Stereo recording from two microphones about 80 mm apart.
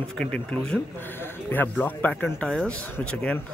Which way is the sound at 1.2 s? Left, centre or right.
Left.